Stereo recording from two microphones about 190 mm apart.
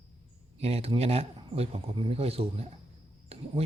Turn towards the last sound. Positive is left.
turn(degrees=-30)  # may be behind; listen again after turning